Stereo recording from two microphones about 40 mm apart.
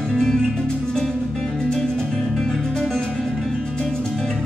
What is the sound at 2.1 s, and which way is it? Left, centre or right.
Music, centre.